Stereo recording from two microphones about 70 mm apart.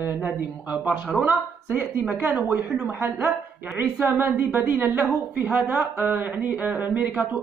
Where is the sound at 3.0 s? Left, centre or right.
Right.